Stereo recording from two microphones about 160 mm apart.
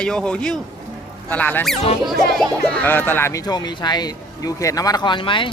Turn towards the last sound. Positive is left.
turn(degrees=30)  # may be behind; listen again after turning